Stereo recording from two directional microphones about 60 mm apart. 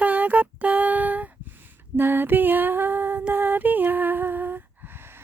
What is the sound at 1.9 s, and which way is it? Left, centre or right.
Lullaby, right.